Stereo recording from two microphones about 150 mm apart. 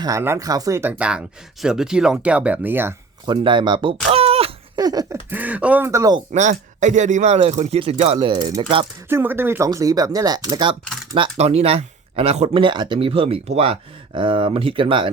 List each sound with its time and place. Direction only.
0.0 s speech: 20° right (ahead or behind)
3.2 s speech: 30° right (ahead or behind)
4.8 s a sound: 25° right (ahead or behind)
5.3 s speech: 10° right (ahead or behind)
6.3 s a man's voice: 55° right (ahead or behind)
9.0 s speech: 15° right (ahead or behind)
9.6 s speech: 25° right (ahead or behind)
11.1 s speech: 40° right (ahead or behind)